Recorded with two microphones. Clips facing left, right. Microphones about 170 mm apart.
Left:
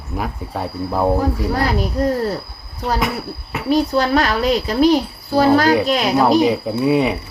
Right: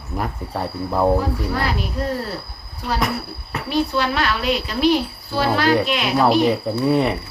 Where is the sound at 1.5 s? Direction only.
40° left (ahead or behind).